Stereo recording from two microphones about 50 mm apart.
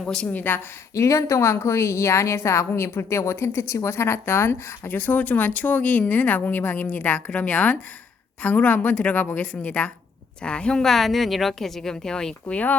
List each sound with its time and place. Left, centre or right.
0.0 s a woman's voice: centre
0.3 s speech: left
0.9 s a woman's voice: left
4.9 s a woman's voice: left; by 10.8 s centre
10.8 s a woman's voice: centre